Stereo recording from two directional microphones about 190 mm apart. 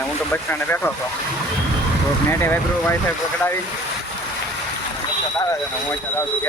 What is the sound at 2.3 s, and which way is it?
Speech, 10° left (ahead or behind).